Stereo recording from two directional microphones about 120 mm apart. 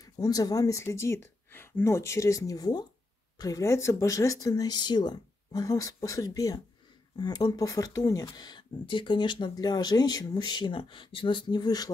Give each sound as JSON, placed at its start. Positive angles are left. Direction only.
{"t": 0.0, "sound": "speech", "side_deg": 30}